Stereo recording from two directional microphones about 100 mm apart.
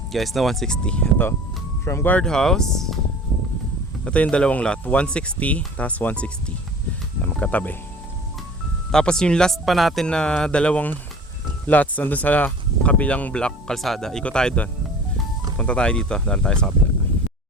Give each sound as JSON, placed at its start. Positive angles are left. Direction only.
{"t": 0.1, "sound": "speech", "side_deg": 0}
{"t": 1.8, "sound": "speech", "side_deg": 25}
{"t": 2.1, "sound": "speech", "side_deg": 5}
{"t": 4.0, "sound": "speech", "side_deg": 10}
{"t": 8.9, "sound": "speech", "side_deg": 5}